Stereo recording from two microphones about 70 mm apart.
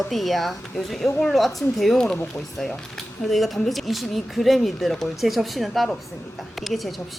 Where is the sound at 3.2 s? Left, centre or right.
Centre.